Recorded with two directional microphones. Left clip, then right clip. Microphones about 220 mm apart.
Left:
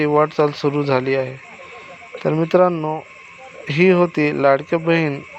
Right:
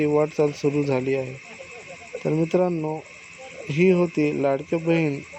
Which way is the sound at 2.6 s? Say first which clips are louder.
Left 7 dB; 15° left (ahead or behind).